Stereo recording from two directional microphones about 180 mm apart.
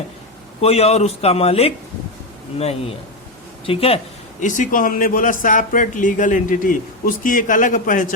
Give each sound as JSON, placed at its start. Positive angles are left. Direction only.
{"t": 0.6, "sound": "a man's voice", "side_deg": 35}
{"t": 3.7, "sound": "speech", "side_deg": 30}
{"t": 4.4, "sound": "a man's voice", "side_deg": 45}